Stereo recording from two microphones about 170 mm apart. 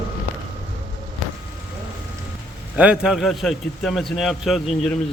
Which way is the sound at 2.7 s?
5° right (ahead or behind).